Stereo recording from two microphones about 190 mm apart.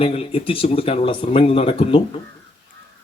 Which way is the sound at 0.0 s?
30° left (ahead or behind).